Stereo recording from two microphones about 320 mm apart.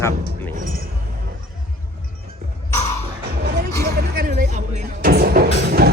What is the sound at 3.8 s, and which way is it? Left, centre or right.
Music, right.